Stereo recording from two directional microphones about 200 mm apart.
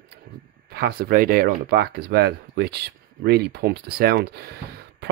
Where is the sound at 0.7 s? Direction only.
50° right (ahead or behind).